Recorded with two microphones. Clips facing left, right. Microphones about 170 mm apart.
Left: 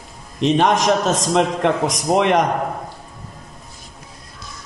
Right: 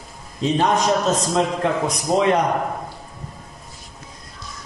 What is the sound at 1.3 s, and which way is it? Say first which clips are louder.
A man's voice: left 3 dB; 70° left (ahead or behind).